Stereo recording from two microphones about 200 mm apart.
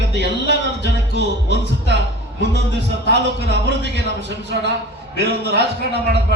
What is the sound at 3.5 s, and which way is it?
A man's voice, 60° right (ahead or behind).